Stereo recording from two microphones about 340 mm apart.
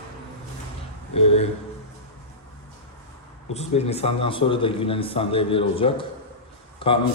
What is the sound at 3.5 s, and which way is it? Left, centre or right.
A man's voice, centre.